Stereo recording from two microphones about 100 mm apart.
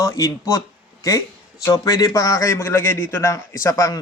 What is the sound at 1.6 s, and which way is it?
Speech, 35° left (ahead or behind).